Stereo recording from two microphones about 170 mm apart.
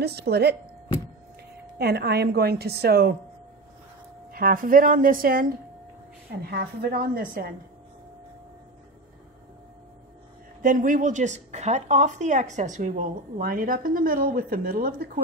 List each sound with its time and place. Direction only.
0.0 s a woman's voice: 70° right (ahead or behind)
1.8 s a woman's voice: 70° right (ahead or behind)
4.3 s a woman's voice: 60° right (ahead or behind)
10.6 s a woman's voice: 50° right (ahead or behind)